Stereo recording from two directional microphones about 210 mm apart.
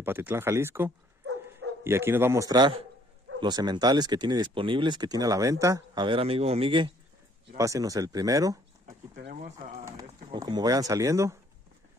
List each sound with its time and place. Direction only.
0.0 s speech: 10° right (ahead or behind)
9.2 s speech: 40° right (ahead or behind)
9.8 s speech: 20° right (ahead or behind)